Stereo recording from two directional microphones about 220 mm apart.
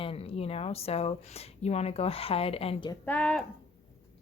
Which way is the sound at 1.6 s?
30° left (ahead or behind).